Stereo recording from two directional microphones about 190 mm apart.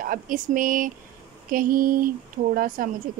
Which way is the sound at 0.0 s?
45° right (ahead or behind).